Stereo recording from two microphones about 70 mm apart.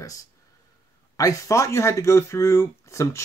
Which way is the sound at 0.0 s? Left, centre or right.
Left.